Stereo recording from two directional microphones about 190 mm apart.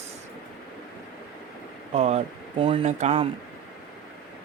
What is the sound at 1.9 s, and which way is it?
Speech, 35° right (ahead or behind).